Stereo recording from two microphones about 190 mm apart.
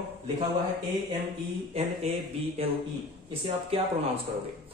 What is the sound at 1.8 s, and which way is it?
Speech, 30° right (ahead or behind).